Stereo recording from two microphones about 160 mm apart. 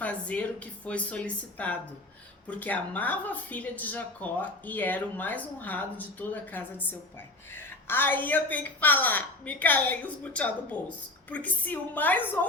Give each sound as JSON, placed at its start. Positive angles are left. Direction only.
{"t": 0.0, "sound": "a woman's voice", "side_deg": 10}